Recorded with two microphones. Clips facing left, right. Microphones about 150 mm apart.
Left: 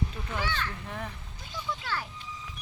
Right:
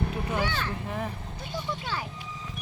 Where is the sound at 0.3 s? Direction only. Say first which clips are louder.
Right 2 dB; 35° right (ahead or behind).